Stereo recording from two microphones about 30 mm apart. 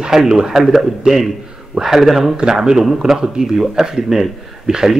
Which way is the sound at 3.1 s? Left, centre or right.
Centre.